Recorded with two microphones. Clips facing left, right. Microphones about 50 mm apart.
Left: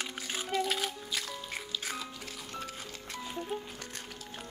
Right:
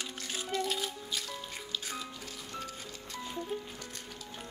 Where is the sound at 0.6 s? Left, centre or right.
Left.